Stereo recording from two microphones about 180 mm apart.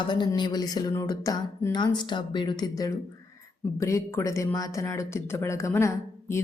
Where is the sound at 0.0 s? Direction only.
25° left (ahead or behind).